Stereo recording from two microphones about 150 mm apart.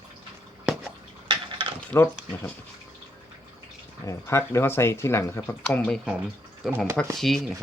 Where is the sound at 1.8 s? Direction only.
15° left (ahead or behind).